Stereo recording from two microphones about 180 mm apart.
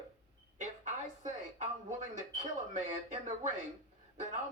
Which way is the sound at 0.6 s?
40° right (ahead or behind).